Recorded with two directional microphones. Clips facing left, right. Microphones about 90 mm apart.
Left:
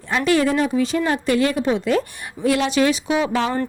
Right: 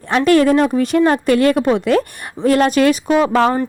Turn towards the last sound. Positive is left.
turn(degrees=-50)  # may be behind; listen again after turning